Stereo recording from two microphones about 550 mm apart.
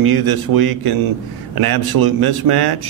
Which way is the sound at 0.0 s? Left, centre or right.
Right.